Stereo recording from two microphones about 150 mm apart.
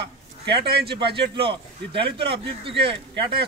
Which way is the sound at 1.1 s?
35° right (ahead or behind).